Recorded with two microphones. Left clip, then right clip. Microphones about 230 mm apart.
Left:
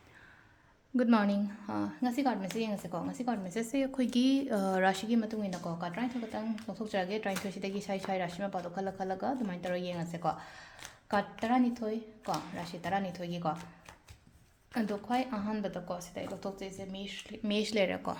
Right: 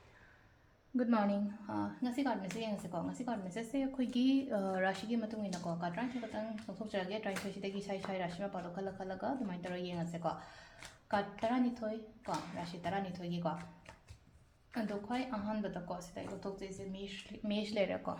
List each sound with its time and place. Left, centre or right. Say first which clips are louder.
0.9 s speech: left 5 dB; left
14.7 s speech: left 6 dB; left